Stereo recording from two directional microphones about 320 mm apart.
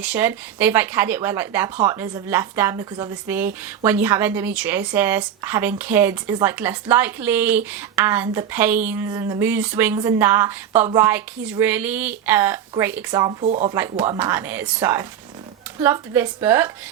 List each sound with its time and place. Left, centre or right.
0.0 s speech: centre; by 13.7 s right
13.7 s speech: centre